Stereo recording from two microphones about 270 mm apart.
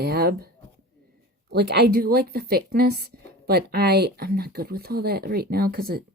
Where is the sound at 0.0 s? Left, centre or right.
Right.